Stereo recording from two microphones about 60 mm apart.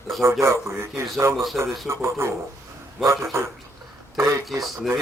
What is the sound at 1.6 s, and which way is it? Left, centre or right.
Speech, centre.